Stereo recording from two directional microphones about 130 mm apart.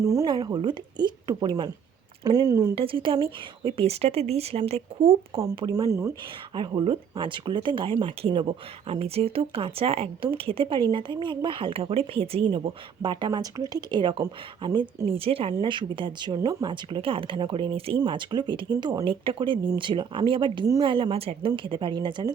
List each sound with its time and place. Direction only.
0.0 s speech: 25° right (ahead or behind)
2.7 s speech: 40° right (ahead or behind)
5.7 s speech: 25° right (ahead or behind)
6.5 s speech: 40° right (ahead or behind)
15.0 s speech: 45° right (ahead or behind)
18.0 s speech: 35° right (ahead or behind)